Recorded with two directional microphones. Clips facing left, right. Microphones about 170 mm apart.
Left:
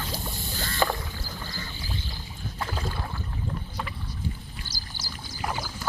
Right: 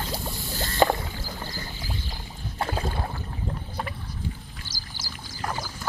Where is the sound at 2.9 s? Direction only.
40° right (ahead or behind).